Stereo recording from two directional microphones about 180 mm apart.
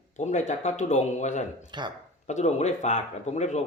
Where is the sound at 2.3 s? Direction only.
40° left (ahead or behind).